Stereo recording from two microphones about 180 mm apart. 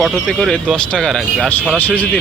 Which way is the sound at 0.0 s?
Centre (ahead or behind).